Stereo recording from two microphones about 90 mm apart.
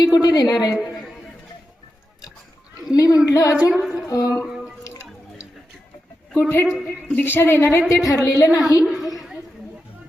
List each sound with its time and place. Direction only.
0.0 s a woman's voice: 50° left (ahead or behind)
2.9 s a woman's voice: 45° left (ahead or behind)
3.7 s a sound: 10° right (ahead or behind)
4.1 s a woman's voice: 40° left (ahead or behind)
6.3 s a woman's voice: 25° left (ahead or behind)
8.8 s a woman's voice: 5° right (ahead or behind)
9.1 s chatter: 5° right (ahead or behind)